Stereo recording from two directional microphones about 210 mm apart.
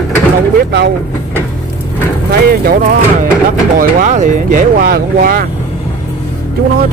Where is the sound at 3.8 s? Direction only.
40° right (ahead or behind).